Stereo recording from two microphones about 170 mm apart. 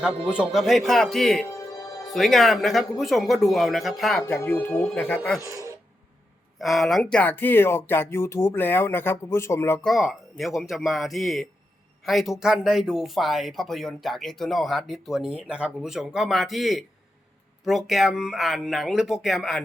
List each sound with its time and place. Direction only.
0.0 s speech: 5° right (ahead or behind)
1.5 s music: 20° left (ahead or behind)
2.1 s speech: centre (ahead or behind)
4.2 s speech: 15° left (ahead or behind)
5.4 s speech: 20° right (ahead or behind)
6.6 s speech: centre (ahead or behind)
9.8 s speech: centre (ahead or behind)